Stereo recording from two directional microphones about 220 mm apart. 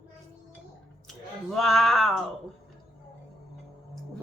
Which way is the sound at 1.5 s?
Centre (ahead or behind).